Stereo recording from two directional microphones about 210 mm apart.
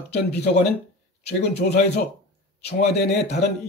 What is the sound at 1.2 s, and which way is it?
Speech, 50° left (ahead or behind).